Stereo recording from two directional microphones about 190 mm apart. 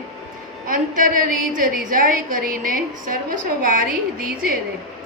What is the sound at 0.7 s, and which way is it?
A woman's voice, 45° right (ahead or behind).